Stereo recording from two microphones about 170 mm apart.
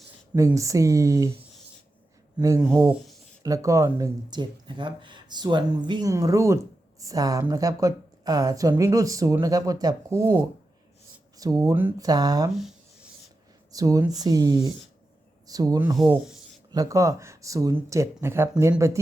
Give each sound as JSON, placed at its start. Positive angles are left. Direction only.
{"t": 0.3, "sound": "speech", "side_deg": -20}
{"t": 3.4, "sound": "speech", "side_deg": -20}
{"t": 12.5, "sound": "a sound", "side_deg": 0}
{"t": 13.7, "sound": "speech", "side_deg": -20}
{"t": 16.0, "sound": "speech", "side_deg": 0}
{"t": 16.7, "sound": "speech", "side_deg": -20}